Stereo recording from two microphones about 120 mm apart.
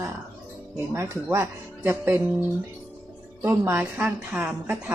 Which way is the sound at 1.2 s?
20° right (ahead or behind).